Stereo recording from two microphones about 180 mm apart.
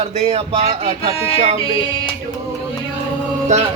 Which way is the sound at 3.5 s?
40° right (ahead or behind).